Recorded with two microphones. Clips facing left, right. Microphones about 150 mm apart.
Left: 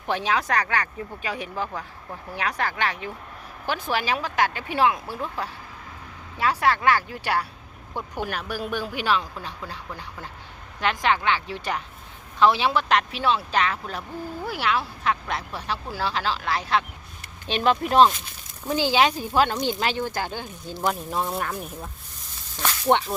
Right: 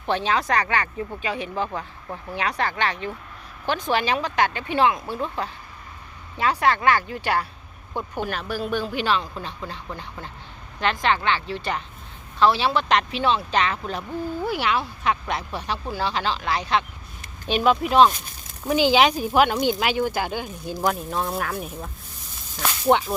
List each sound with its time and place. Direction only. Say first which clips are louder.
0.1 s speech: right 2 dB; 10° left (ahead or behind)
0.6 s speech: right 2 dB; 5° right (ahead or behind); by 12.8 s 15° left (ahead or behind)
12.9 s speech: right 1 dB; 5° left (ahead or behind)
18.7 s speech: right 3 dB; 15° right (ahead or behind)
20.8 s speech: right 1 dB; centre (ahead or behind)